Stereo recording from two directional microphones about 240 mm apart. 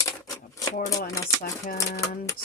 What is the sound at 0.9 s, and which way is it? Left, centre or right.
Speech, centre.